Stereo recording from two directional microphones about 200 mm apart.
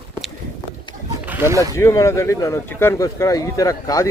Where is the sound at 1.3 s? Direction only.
10° right (ahead or behind).